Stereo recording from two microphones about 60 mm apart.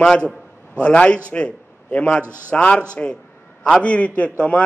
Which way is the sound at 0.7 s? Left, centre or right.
Centre.